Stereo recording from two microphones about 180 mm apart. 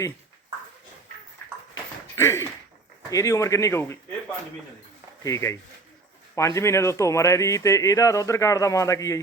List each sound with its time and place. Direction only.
2.1 s speech: 15° left (ahead or behind)
5.2 s speech: 15° left (ahead or behind)